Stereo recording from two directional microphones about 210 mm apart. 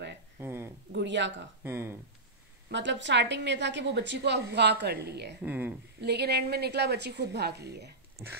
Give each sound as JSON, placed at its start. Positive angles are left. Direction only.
{"t": 0.4, "sound": "a sound", "side_deg": -10}
{"t": 0.9, "sound": "speech", "side_deg": -60}
{"t": 1.6, "sound": "speech", "side_deg": -10}
{"t": 2.7, "sound": "a woman's voice", "side_deg": -60}
{"t": 5.4, "sound": "speech", "side_deg": -10}
{"t": 5.9, "sound": "a woman's voice", "side_deg": -50}